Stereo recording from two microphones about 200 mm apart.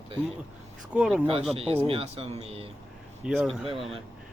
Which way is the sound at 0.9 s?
5° right (ahead or behind).